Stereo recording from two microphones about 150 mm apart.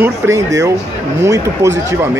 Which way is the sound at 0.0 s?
20° right (ahead or behind).